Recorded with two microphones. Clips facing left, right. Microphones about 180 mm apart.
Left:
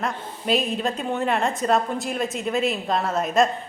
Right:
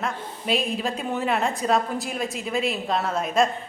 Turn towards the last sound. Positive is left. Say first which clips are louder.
# left 2 dB
turn(degrees=0)  # may be behind; listen again after turning